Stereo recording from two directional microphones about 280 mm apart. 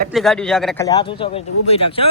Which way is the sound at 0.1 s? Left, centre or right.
Centre.